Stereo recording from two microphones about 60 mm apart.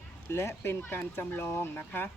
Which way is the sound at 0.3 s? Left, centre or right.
Left.